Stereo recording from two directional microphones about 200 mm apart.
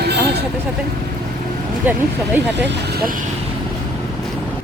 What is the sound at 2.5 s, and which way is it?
Speech, 60° right (ahead or behind).